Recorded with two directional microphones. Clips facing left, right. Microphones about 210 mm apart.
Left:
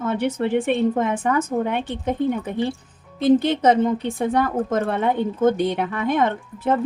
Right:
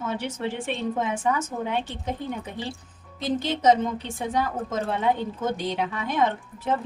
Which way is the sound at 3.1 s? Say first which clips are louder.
Left 10 dB; 55° left (ahead or behind).